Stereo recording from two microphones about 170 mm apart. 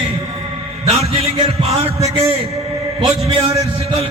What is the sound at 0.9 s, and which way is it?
A man's voice, 35° right (ahead or behind).